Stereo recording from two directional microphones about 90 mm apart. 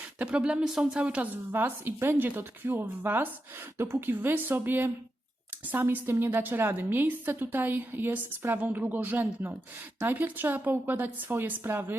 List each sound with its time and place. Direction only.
0.0 s a woman's voice: 15° right (ahead or behind)